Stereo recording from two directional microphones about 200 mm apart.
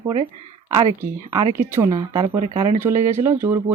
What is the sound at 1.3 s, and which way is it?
Speech, 20° right (ahead or behind).